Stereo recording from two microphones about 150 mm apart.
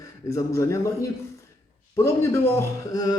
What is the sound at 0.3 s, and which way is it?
Speech, 20° left (ahead or behind).